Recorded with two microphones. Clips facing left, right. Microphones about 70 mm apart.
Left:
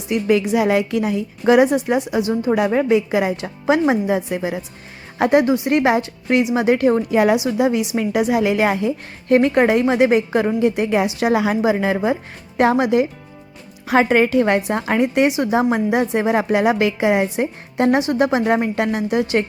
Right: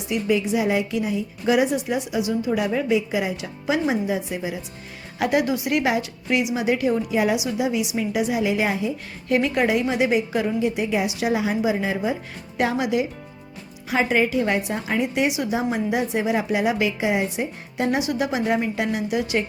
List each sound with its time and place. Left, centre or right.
0.1 s a woman's voice: left
5.2 s a woman's voice: left
9.3 s a woman's voice: left
11.3 s a woman's voice: left
12.5 s a woman's voice: left
13.8 s a woman's voice: left